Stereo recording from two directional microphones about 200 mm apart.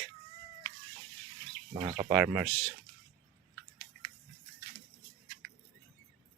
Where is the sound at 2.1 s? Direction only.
10° right (ahead or behind).